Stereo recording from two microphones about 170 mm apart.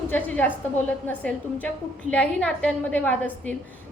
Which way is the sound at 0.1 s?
10° left (ahead or behind).